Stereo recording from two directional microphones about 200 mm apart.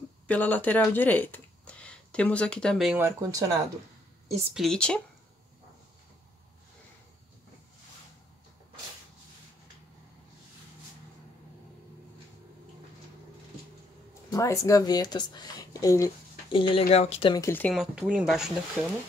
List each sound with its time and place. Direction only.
0.3 s speech: 10° left (ahead or behind)
3.0 s speech: 15° right (ahead or behind)
4.5 s speech: centre (ahead or behind)
14.3 s speech: 15° left (ahead or behind)
16.5 s speech: 25° left (ahead or behind); by 17.8 s 10° left (ahead or behind)
17.9 s speech: 5° right (ahead or behind)